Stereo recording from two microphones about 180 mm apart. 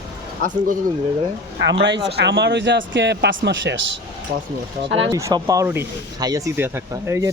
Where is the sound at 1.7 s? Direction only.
80° right.